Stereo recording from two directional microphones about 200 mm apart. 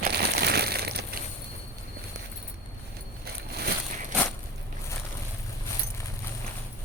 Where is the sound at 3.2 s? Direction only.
50° right (ahead or behind).